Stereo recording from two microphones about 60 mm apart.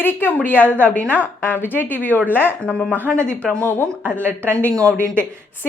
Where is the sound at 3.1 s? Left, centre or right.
Centre.